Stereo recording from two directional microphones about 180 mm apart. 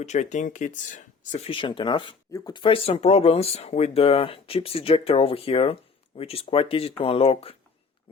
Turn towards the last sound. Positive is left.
turn(degrees=30)  # may be behind; listen again after turning